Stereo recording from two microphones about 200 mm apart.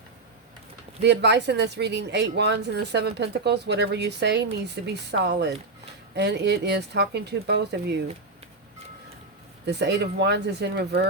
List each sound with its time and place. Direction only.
1.0 s speech: 60° right (ahead or behind)
9.6 s speech: 55° right (ahead or behind)